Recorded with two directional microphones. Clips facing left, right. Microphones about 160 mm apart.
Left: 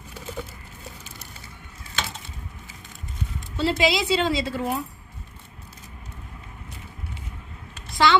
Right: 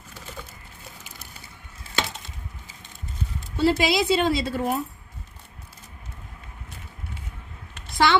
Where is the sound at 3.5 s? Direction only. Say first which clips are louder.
Right 2 dB; 50° right (ahead or behind).